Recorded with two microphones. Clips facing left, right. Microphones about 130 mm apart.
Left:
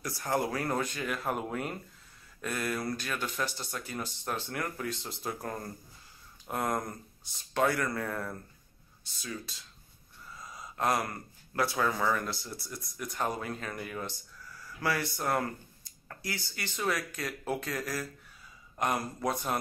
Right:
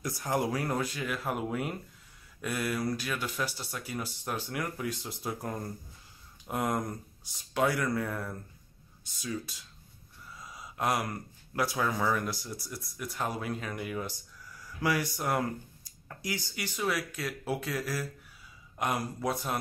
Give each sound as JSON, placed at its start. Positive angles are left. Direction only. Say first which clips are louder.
{"t": 0.0, "sound": "speech", "louder": "right 1 dB", "side_deg": -15}